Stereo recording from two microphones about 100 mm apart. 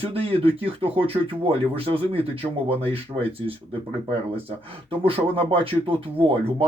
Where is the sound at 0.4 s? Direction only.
65° right (ahead or behind).